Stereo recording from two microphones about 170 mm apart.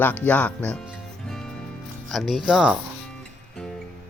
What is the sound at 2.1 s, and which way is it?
Speech, centre (ahead or behind).